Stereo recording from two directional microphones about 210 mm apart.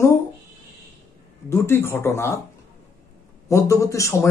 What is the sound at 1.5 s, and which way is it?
Speech, 10° left (ahead or behind).